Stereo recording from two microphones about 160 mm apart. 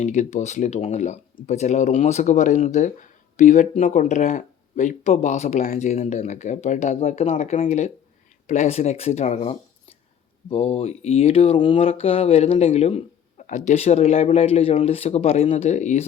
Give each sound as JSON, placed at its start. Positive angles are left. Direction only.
{"t": 0.0, "sound": "speech", "side_deg": 50}
{"t": 5.6, "sound": "speech", "side_deg": 60}
{"t": 5.9, "sound": "speech", "side_deg": 45}